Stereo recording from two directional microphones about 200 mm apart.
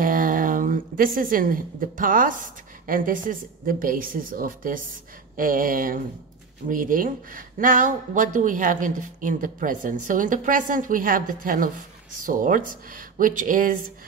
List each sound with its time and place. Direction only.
0.0 s a woman's voice: 45° right (ahead or behind)